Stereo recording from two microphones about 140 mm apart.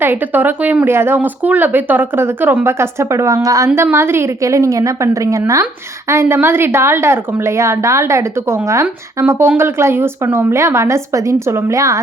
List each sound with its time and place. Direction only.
0.0 s speech: 15° right (ahead or behind)